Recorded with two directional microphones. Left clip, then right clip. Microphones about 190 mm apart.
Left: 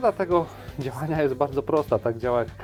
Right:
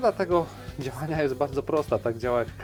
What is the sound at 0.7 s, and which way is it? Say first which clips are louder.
Speech: left 2 dB; centre (ahead or behind).